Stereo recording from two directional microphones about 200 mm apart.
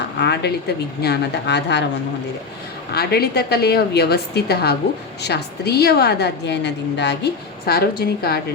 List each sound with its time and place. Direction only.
0.2 s a woman's voice: 60° left (ahead or behind)
2.9 s a woman's voice: 55° left (ahead or behind)